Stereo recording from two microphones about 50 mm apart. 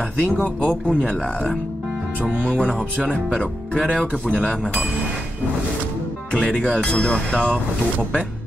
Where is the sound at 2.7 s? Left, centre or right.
Right.